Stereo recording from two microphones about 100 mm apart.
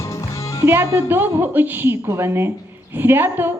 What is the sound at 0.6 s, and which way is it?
A woman's voice, 25° right (ahead or behind).